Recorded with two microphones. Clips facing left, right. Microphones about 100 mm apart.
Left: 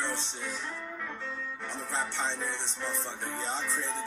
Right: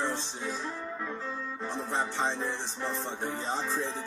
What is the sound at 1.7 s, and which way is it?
Music, 30° right (ahead or behind).